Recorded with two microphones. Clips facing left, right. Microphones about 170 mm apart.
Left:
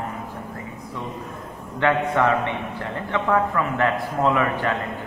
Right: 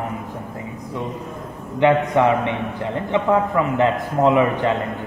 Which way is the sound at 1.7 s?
20° right (ahead or behind).